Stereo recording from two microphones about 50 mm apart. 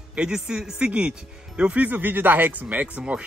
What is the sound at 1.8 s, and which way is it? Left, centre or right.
Speech, right.